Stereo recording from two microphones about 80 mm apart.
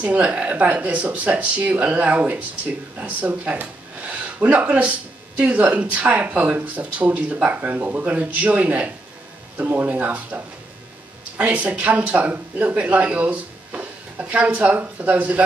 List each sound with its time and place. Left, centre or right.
0.0 s speech: centre